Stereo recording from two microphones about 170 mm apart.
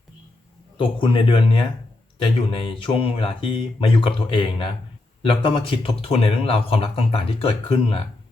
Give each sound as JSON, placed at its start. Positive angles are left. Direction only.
{"t": 0.8, "sound": "speech", "side_deg": 30}